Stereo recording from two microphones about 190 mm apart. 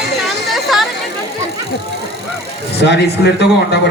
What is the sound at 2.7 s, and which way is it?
A man's voice, 65° left (ahead or behind).